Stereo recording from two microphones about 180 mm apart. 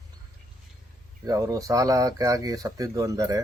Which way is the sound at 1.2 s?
20° right (ahead or behind).